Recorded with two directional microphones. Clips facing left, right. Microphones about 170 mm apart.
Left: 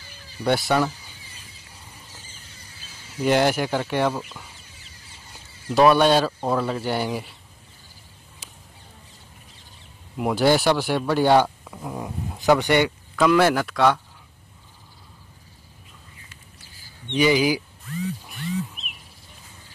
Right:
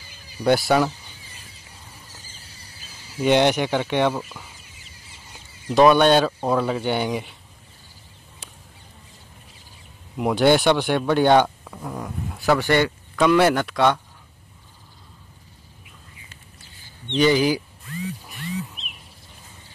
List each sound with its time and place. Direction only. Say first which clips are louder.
0.4 s speech: right 3 dB; centre (ahead or behind)
3.3 s speech: right 2 dB; 5° left (ahead or behind)
5.7 s speech: right 2 dB; 5° left (ahead or behind)
10.1 s speech: right 2 dB; centre (ahead or behind)
11.9 s speech: even; 20° left (ahead or behind)
13.1 s speech: right 1 dB; centre (ahead or behind)
17.1 s speech: right 1 dB; 10° left (ahead or behind)
18.2 s a sound: left 2 dB; centre (ahead or behind)